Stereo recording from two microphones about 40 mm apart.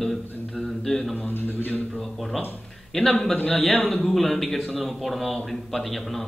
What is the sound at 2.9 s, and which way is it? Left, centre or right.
Speech, centre.